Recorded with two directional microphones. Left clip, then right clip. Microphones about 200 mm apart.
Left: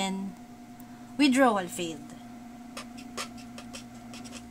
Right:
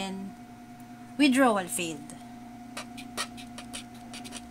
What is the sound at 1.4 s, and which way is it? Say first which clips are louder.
Speech: left 1 dB; 5° right (ahead or behind).